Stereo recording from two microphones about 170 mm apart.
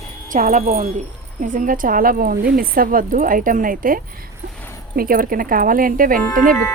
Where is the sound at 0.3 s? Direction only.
50° right (ahead or behind).